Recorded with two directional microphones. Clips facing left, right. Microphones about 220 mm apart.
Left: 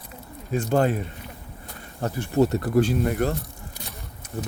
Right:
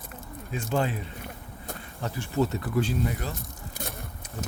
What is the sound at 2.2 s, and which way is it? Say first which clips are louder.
Speech: left 6 dB; 60° left (ahead or behind).